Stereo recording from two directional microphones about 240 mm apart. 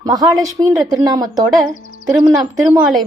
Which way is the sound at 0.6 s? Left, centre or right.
Centre.